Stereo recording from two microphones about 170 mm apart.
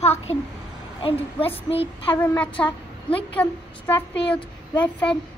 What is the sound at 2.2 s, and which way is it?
Speech, 10° left (ahead or behind).